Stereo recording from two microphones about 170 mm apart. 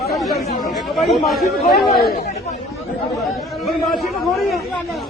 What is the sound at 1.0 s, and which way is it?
Speech, centre (ahead or behind).